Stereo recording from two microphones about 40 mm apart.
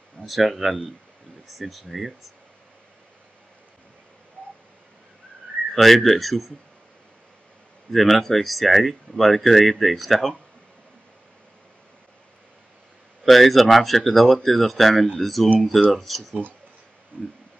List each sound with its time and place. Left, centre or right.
0.2 s speech: centre
5.8 s speech: centre
7.9 s speech: centre
13.2 s speech: centre
17.1 s a sound: right